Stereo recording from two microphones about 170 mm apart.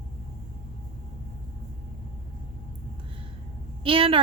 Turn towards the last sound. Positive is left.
turn(degrees=-30)  # may be behind; listen again after turning